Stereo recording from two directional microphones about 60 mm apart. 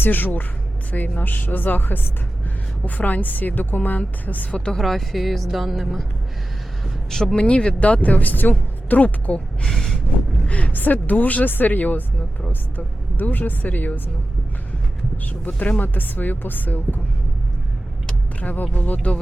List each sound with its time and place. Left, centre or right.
0.0 s a woman's voice: left
4.8 s a woman's voice: centre
7.1 s speech: centre
7.3 s a woman's voice: centre
9.6 s a sound: centre
10.4 s a woman's voice: left
15.2 s a woman's voice: left
18.3 s a woman's voice: left